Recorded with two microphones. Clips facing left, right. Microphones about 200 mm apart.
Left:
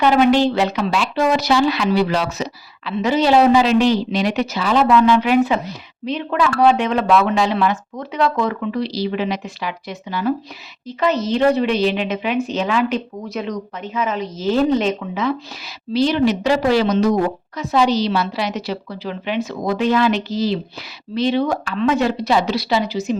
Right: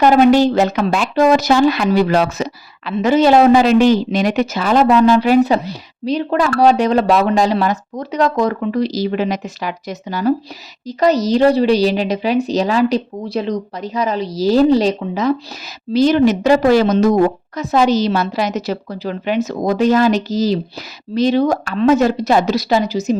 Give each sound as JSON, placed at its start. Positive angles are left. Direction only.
{"t": 0.0, "sound": "a woman's voice", "side_deg": -45}